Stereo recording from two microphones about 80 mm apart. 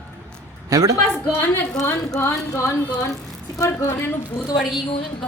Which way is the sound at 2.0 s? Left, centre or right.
Left.